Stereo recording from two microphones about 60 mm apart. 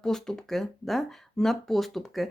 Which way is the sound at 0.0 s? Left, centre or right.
Centre.